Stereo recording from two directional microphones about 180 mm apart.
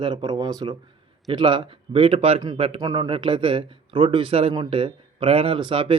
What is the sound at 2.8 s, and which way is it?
Speech, 20° right (ahead or behind).